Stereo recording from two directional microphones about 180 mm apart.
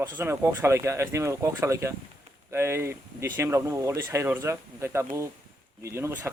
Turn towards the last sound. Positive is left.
turn(degrees=-15)  # may be behind; listen again after turning